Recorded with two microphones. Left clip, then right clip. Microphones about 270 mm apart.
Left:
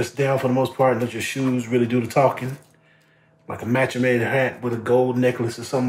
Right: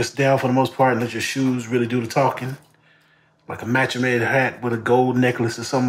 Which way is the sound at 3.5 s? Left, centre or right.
Centre.